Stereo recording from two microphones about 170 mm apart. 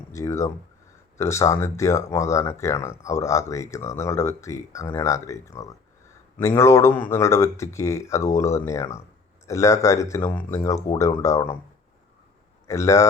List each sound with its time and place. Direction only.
0.1 s speech: 20° left (ahead or behind)
12.6 s a man's voice: 15° left (ahead or behind)